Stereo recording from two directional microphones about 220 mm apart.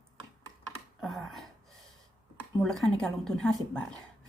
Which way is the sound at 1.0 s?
Centre (ahead or behind).